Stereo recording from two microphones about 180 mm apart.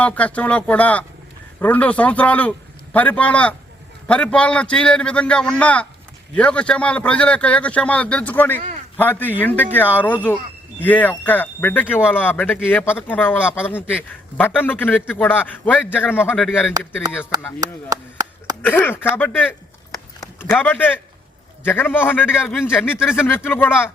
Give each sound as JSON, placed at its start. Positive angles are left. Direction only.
{"t": 0.0, "sound": "a man's voice", "side_deg": 10}
{"t": 17.9, "sound": "speech", "side_deg": -20}
{"t": 18.6, "sound": "a man's voice", "side_deg": 10}